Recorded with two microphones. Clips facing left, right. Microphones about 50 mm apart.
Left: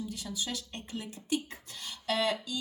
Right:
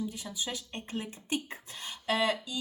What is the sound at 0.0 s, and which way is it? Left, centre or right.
Speech, right.